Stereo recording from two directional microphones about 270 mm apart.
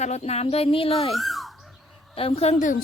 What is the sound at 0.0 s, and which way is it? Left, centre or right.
A woman's voice, left.